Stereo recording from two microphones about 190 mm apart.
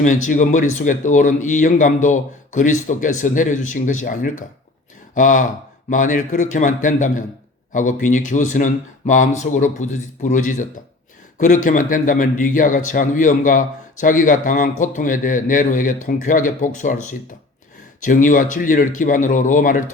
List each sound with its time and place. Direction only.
0.0 s a man's voice: 40° left (ahead or behind)